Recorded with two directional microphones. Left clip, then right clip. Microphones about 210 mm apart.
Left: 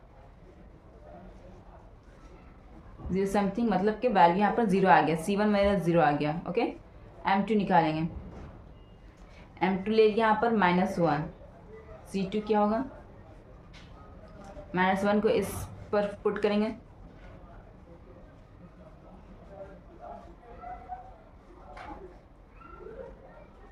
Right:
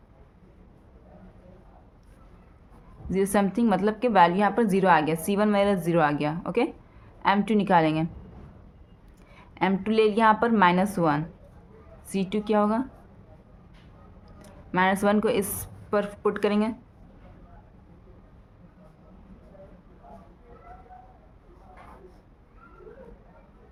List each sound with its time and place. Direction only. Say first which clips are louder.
3.1 s a woman's voice: right 4 dB; 25° right (ahead or behind)
9.6 s a woman's voice: right 1 dB; 25° right (ahead or behind)
14.7 s a woman's voice: right 4 dB; 25° right (ahead or behind)